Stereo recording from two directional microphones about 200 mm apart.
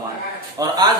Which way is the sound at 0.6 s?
20° right (ahead or behind).